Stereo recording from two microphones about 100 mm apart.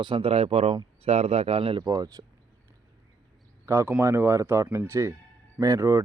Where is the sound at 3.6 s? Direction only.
25° right (ahead or behind).